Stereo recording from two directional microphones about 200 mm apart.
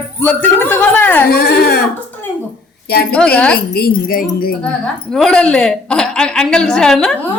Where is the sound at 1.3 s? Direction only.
50° left (ahead or behind).